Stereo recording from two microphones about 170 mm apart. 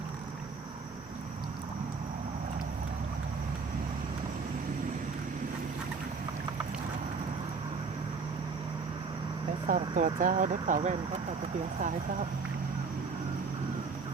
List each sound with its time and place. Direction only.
9.6 s speech: 50° right (ahead or behind)